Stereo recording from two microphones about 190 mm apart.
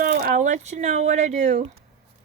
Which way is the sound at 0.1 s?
50° right (ahead or behind).